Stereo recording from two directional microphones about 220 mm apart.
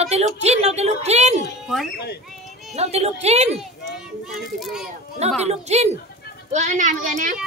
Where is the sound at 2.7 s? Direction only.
30° right (ahead or behind).